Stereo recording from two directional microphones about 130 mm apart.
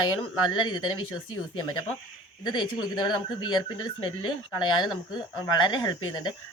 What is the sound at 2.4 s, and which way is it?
Speech, 35° left (ahead or behind).